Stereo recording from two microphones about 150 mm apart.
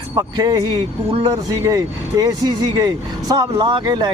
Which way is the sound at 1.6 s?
25° right (ahead or behind).